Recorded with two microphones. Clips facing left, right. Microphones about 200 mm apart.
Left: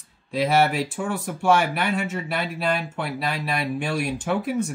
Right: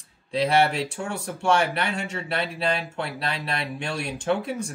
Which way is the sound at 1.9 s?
5° left (ahead or behind).